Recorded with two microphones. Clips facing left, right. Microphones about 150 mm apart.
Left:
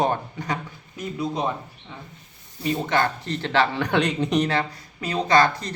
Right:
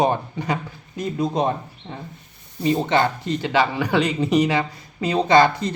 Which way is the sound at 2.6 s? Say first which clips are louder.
Right 4 dB; 25° right (ahead or behind).